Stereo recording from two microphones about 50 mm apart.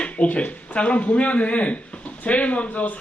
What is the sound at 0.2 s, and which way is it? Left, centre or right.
A man's voice, left.